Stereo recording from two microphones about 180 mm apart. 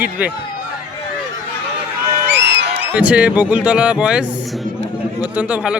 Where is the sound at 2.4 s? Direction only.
70° right (ahead or behind).